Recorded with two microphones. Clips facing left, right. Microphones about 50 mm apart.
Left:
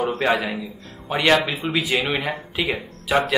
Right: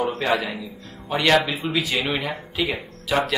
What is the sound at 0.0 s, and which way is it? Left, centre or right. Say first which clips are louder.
Speech: left 2 dB; centre.